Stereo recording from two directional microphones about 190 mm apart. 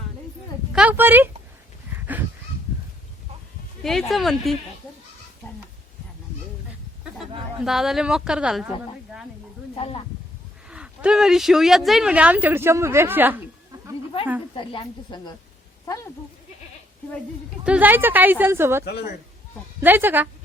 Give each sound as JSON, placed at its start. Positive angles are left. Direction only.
{"t": 0.7, "sound": "speech", "side_deg": -5}
{"t": 3.8, "sound": "speech", "side_deg": 0}
{"t": 7.0, "sound": "speech", "side_deg": 0}
{"t": 9.7, "sound": "speech", "side_deg": 30}
{"t": 10.7, "sound": "speech", "side_deg": -5}
{"t": 14.5, "sound": "speech", "side_deg": 25}
{"t": 17.6, "sound": "speech", "side_deg": -5}
{"t": 18.9, "sound": "speech", "side_deg": 60}
{"t": 19.8, "sound": "speech", "side_deg": -10}